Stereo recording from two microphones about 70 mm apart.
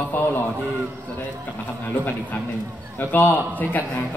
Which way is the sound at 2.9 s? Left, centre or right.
Left.